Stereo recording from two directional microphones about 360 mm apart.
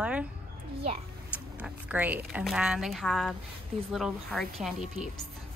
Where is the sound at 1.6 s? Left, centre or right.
Centre.